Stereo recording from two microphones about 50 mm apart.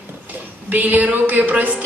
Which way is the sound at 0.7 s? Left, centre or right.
Right.